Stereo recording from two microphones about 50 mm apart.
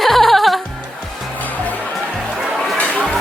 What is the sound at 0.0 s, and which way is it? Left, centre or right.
Music, centre.